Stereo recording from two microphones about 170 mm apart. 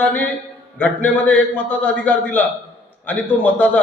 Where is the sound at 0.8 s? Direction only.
10° left (ahead or behind).